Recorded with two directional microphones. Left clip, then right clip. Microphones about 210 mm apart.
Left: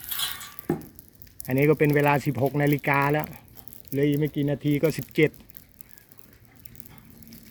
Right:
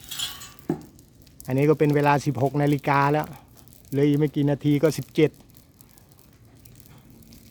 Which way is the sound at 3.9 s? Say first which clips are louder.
Right 3 dB; 25° right (ahead or behind).